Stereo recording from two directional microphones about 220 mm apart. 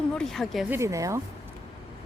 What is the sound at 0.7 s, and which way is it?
Speech, 15° right (ahead or behind).